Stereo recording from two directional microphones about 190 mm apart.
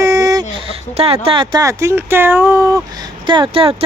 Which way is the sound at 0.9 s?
35° right (ahead or behind).